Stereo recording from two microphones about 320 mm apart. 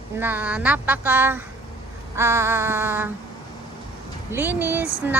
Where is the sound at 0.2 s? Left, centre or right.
Centre.